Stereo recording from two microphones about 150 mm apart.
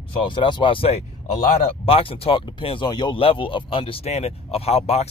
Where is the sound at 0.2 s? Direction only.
30° left (ahead or behind).